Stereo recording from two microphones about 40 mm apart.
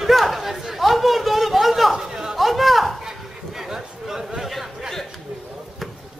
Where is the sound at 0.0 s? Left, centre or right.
Centre.